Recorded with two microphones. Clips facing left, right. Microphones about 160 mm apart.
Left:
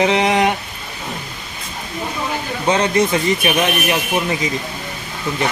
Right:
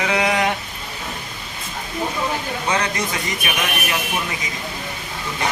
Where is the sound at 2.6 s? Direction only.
25° left (ahead or behind).